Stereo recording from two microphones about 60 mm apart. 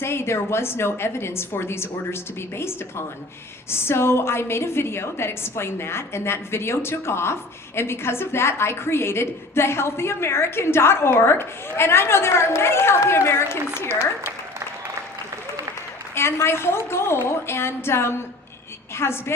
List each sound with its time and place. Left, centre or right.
0.0 s a woman's voice: left
16.1 s a woman's voice: left